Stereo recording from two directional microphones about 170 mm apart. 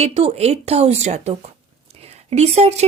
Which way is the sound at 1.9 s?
35° right (ahead or behind).